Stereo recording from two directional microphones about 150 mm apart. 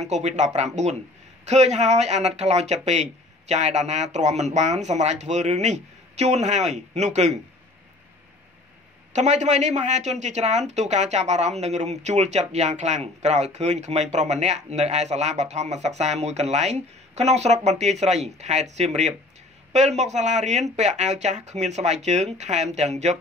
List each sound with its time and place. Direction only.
0.0 s speech: 50° right (ahead or behind)
9.1 s speech: 50° right (ahead or behind)